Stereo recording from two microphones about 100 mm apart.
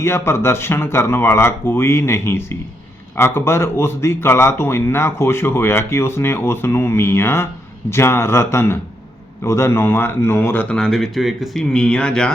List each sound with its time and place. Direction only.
0.0 s speech: 25° left (ahead or behind)
10.8 s speech: 5° left (ahead or behind)